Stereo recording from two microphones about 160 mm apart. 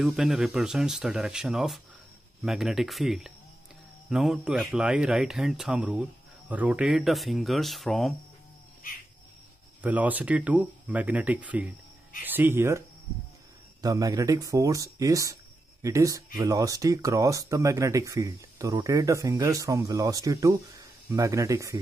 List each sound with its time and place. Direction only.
0.0 s speech: centre (ahead or behind)
9.8 s speech: 10° right (ahead or behind)